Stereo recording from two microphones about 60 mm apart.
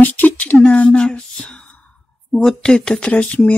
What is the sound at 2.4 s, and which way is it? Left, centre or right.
Speech, centre.